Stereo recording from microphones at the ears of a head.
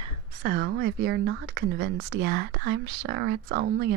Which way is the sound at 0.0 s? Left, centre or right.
Right.